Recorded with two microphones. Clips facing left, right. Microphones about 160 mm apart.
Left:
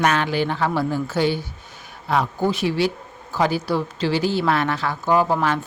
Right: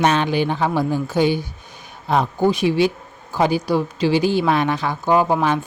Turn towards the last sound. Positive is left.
turn(degrees=-15)  # may be behind; listen again after turning